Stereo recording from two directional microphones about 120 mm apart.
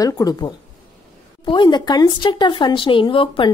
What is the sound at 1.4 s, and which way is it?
Speech, 45° left (ahead or behind).